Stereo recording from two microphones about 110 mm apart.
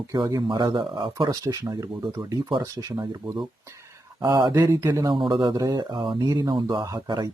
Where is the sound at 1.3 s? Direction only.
30° right (ahead or behind).